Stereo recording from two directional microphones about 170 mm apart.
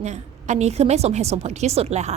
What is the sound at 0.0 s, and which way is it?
A woman's voice, 40° right (ahead or behind).